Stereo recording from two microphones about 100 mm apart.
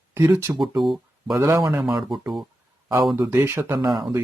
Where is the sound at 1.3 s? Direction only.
30° right (ahead or behind).